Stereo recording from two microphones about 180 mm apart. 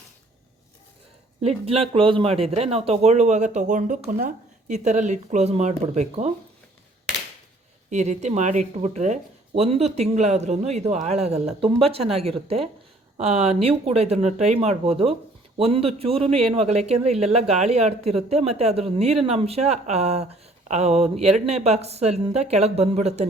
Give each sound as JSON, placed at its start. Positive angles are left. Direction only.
{"t": 1.4, "sound": "speech", "side_deg": -35}
{"t": 7.9, "sound": "speech", "side_deg": -40}